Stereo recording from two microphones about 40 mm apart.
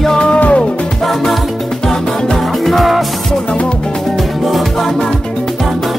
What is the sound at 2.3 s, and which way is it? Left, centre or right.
Music, centre.